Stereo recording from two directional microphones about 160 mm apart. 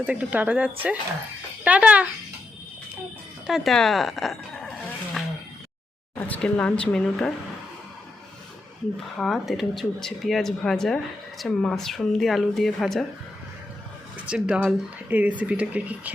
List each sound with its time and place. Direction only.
0.0 s speech: 10° right (ahead or behind)
3.4 s a sound: centre (ahead or behind)
6.1 s speech: 10° left (ahead or behind)
9.1 s speech: centre (ahead or behind)
14.3 s speech: 5° right (ahead or behind)